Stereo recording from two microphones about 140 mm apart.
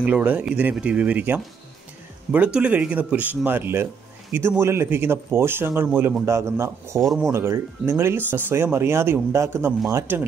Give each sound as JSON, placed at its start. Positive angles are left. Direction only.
{"t": 0.0, "sound": "a man's voice", "side_deg": -10}
{"t": 7.0, "sound": "speech", "side_deg": -5}
{"t": 7.3, "sound": "speech", "side_deg": -20}